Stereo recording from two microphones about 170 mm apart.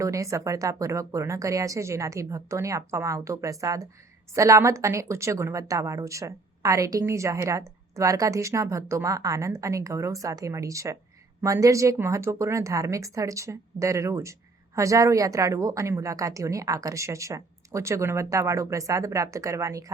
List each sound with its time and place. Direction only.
0.0 s speech: 20° right (ahead or behind)